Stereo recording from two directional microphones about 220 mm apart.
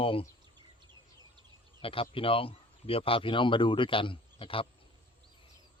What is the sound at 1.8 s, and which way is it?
Speech, 25° left (ahead or behind).